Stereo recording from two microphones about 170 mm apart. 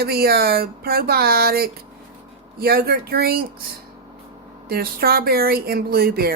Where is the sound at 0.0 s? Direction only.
65° right (ahead or behind).